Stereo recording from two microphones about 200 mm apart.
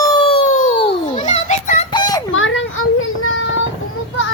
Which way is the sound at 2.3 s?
75° left (ahead or behind).